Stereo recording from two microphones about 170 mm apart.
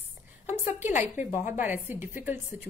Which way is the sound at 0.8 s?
45° left (ahead or behind).